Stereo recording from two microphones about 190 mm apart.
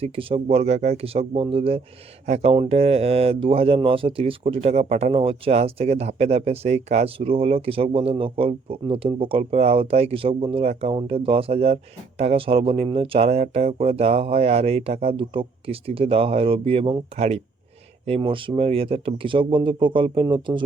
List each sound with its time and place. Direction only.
0.0 s speech: 30° right (ahead or behind)